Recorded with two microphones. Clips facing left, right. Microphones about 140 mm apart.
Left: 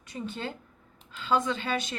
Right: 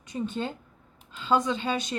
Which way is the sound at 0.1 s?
20° right (ahead or behind).